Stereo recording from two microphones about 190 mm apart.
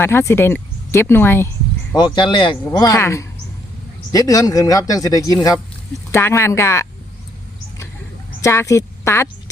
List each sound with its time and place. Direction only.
0.0 s speech: 15° left (ahead or behind)
2.0 s speech: 25° left (ahead or behind)
8.4 s a woman's voice: 15° left (ahead or behind)